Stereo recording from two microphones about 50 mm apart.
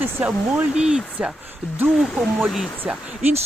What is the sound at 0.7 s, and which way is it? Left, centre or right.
Speech, centre.